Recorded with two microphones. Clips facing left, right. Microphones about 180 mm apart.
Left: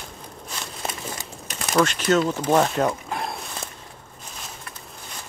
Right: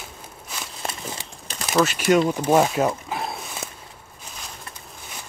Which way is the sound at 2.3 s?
10° right (ahead or behind).